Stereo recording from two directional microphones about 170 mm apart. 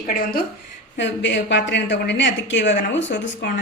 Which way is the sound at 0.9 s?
90° left.